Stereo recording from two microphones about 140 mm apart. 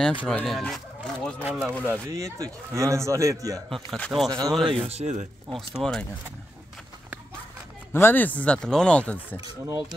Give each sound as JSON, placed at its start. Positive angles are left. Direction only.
{"t": 0.2, "sound": "speech", "side_deg": 5}
{"t": 2.0, "sound": "a man's voice", "side_deg": -20}
{"t": 3.7, "sound": "speech", "side_deg": 0}
{"t": 4.3, "sound": "a man's voice", "side_deg": -25}
{"t": 4.6, "sound": "speech", "side_deg": -45}
{"t": 5.5, "sound": "speech", "side_deg": 5}
{"t": 7.9, "sound": "speech", "side_deg": 15}
{"t": 9.4, "sound": "a man's voice", "side_deg": -30}